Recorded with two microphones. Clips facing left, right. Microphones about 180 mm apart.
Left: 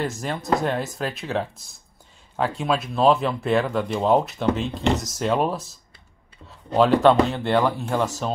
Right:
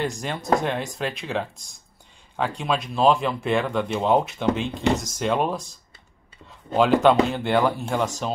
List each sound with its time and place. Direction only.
0.0 s speech: centre (ahead or behind)